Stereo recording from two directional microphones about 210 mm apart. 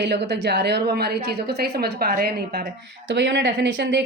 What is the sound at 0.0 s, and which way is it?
A woman's voice, 55° right (ahead or behind).